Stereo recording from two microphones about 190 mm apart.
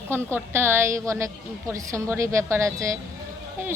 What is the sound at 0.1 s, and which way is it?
A woman's voice, 10° right (ahead or behind).